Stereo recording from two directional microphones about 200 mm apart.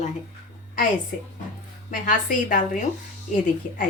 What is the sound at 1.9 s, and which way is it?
A woman's voice, 45° left (ahead or behind).